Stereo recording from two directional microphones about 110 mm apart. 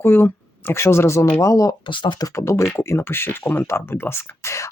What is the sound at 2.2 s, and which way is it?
Speech, 25° left (ahead or behind).